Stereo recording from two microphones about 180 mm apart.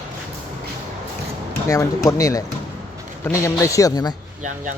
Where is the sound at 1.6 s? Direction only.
15° left (ahead or behind).